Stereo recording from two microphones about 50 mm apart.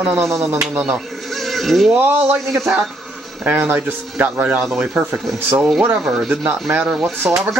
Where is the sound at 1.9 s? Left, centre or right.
Right.